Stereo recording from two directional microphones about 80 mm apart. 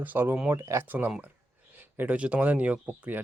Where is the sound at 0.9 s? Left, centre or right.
Right.